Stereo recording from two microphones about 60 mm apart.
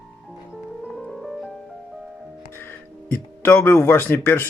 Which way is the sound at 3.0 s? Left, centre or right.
Left.